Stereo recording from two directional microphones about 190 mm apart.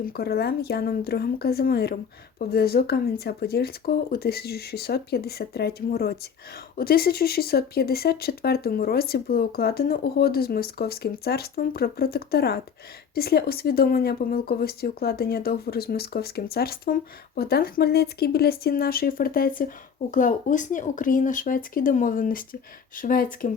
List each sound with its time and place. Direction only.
0.0 s speech: 55° left (ahead or behind)